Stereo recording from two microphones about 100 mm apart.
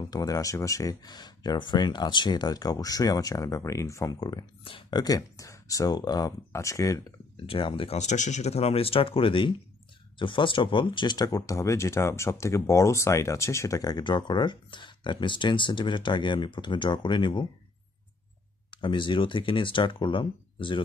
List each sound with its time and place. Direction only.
0.0 s speech: 40° left (ahead or behind)
7.3 s speech: 65° left (ahead or behind)
8.5 s speech: 90° left; by 17.5 s 55° left (ahead or behind)
18.7 s speech: 55° left (ahead or behind)